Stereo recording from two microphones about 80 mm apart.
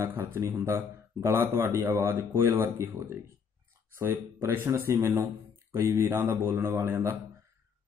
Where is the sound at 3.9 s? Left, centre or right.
Right.